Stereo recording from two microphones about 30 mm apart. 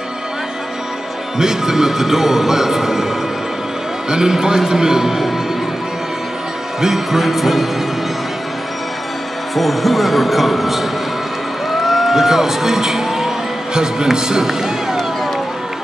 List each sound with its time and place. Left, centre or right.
1.4 s speech: centre
4.3 s speech: centre
6.8 s speech: centre
9.6 s speech: centre; by 14.4 s right
14.4 s music: centre